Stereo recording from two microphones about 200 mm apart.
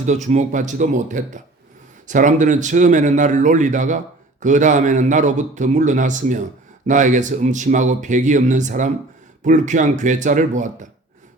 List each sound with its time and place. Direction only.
0.0 s speech: 35° right (ahead or behind)